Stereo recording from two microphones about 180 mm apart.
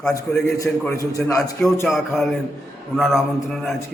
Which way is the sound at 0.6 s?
15° left (ahead or behind).